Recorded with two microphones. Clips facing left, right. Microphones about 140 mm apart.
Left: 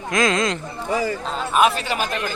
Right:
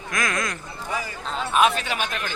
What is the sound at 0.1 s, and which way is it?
Speech, 20° left (ahead or behind).